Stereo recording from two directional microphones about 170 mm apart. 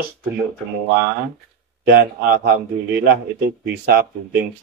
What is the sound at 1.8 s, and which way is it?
Speech, 60° right (ahead or behind).